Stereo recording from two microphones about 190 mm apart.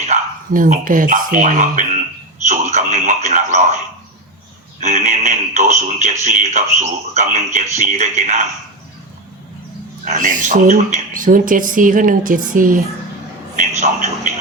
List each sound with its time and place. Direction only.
0.0 s speech: 40° right (ahead or behind)
2.5 s a sound: 40° right (ahead or behind)
4.8 s speech: 40° right (ahead or behind)
10.1 s speech: 45° right (ahead or behind)